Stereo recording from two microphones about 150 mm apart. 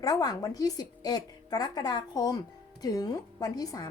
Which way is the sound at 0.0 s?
25° left (ahead or behind).